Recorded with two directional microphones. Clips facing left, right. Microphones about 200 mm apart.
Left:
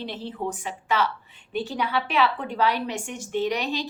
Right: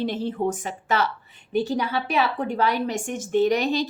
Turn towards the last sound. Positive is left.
turn(degrees=-45)  # may be behind; listen again after turning